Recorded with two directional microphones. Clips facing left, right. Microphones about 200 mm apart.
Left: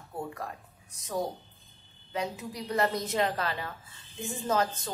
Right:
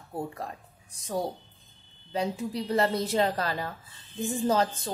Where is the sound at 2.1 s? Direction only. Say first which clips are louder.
Right 4 dB; 30° right (ahead or behind).